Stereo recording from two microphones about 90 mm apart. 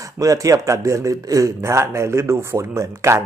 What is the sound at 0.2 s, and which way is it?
Speech, 40° right (ahead or behind).